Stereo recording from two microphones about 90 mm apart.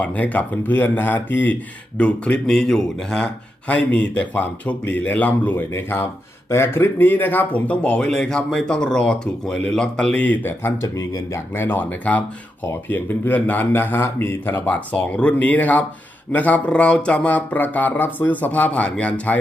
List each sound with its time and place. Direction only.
0.0 s speech: 15° left (ahead or behind)
10.8 s a man's voice: 35° left (ahead or behind); by 19.4 s 15° left (ahead or behind)